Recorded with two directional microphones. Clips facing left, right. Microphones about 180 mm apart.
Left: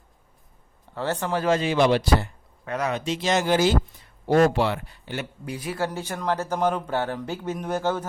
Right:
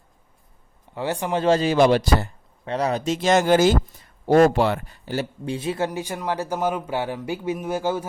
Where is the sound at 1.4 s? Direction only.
35° right (ahead or behind).